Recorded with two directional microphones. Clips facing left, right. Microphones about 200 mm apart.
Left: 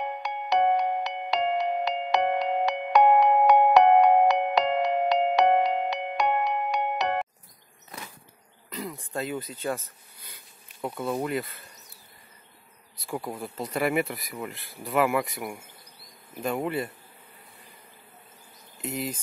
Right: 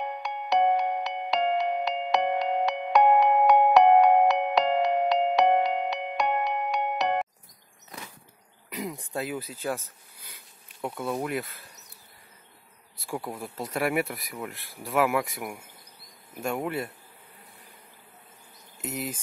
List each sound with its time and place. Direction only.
0.2 s music: centre (ahead or behind)
8.6 s insect: 15° right (ahead or behind)
9.1 s speech: 5° right (ahead or behind)
10.3 s bee: centre (ahead or behind)
13.0 s speech: centre (ahead or behind)